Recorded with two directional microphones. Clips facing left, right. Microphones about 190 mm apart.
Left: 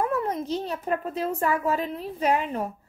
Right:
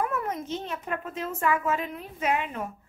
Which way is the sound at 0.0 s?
30° left (ahead or behind).